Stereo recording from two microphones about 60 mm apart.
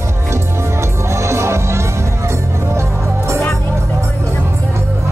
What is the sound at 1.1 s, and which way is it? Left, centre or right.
Music, right.